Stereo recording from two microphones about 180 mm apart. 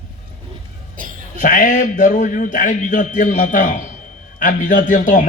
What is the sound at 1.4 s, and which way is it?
A man's voice, 45° left (ahead or behind).